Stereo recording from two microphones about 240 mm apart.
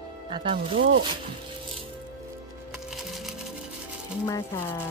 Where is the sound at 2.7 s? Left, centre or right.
Centre.